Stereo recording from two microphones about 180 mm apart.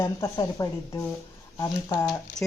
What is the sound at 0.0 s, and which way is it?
Speech, 20° left (ahead or behind).